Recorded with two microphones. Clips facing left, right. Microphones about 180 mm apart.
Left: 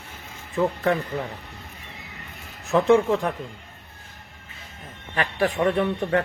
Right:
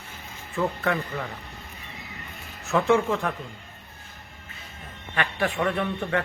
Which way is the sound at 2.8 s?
35° left (ahead or behind).